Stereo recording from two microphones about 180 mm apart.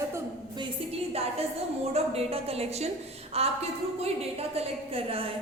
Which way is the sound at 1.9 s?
35° right (ahead or behind).